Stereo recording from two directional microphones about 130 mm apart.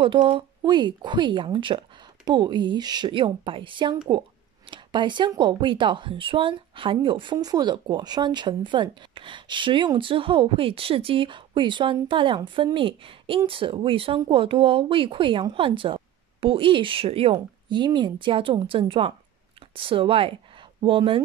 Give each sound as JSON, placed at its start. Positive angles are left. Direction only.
{"t": 0.0, "sound": "speech", "side_deg": -40}